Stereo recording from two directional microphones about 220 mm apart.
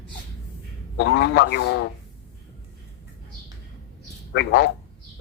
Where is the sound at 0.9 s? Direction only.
50° left (ahead or behind).